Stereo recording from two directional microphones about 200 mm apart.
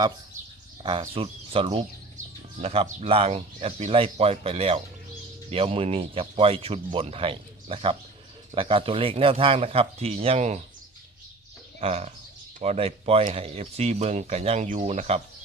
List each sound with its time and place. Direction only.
0.8 s speech: 25° right (ahead or behind)
11.8 s speech: 30° right (ahead or behind)